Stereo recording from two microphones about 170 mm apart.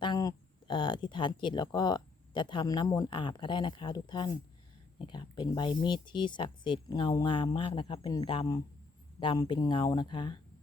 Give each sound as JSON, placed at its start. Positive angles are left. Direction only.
{"t": 0.0, "sound": "speech", "side_deg": 25}